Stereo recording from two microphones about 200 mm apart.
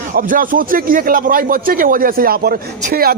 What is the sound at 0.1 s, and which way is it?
Speech, 45° right (ahead or behind).